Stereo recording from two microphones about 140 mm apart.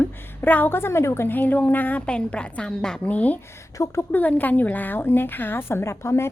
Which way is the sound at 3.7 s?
20° left (ahead or behind).